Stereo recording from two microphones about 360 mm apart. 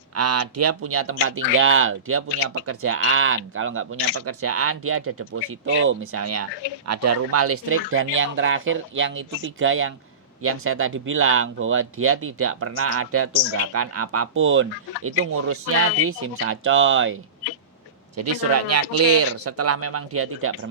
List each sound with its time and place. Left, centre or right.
0.2 s speech: right
18.2 s speech: right